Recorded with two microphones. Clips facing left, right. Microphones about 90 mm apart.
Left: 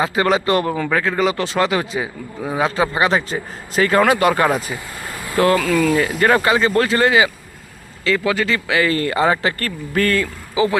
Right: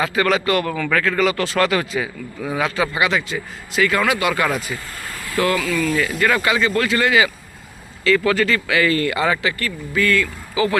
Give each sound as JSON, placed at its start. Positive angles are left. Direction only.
{"t": 0.0, "sound": "speech", "side_deg": 25}
{"t": 4.4, "sound": "speech", "side_deg": 25}
{"t": 5.4, "sound": "speech", "side_deg": 40}
{"t": 5.9, "sound": "speech", "side_deg": 25}
{"t": 6.1, "sound": "speech", "side_deg": 35}
{"t": 10.5, "sound": "speech", "side_deg": 20}